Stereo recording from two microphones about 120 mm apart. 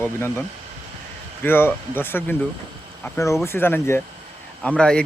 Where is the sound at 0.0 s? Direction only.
20° left (ahead or behind).